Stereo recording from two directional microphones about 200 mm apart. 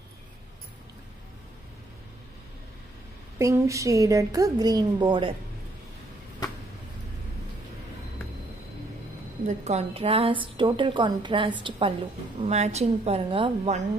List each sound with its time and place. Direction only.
3.3 s a woman's voice: 15° right (ahead or behind)
9.5 s a woman's voice: 35° right (ahead or behind)